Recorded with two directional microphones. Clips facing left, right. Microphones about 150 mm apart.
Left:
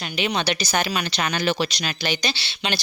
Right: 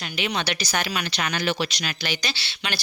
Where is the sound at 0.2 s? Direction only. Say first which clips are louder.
Left 3 dB; 25° left (ahead or behind).